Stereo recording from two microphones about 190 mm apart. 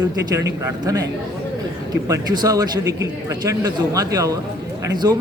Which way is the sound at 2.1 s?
20° right (ahead or behind).